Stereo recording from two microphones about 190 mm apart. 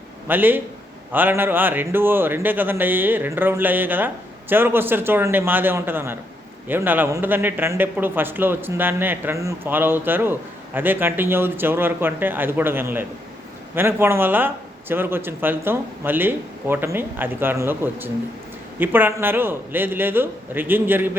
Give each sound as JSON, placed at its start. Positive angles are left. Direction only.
{"t": 0.3, "sound": "speech", "side_deg": -10}